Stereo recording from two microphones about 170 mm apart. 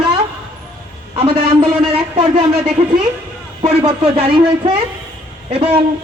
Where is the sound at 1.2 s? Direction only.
35° right (ahead or behind).